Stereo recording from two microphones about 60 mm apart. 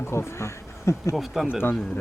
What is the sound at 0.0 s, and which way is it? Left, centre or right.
Speech, left.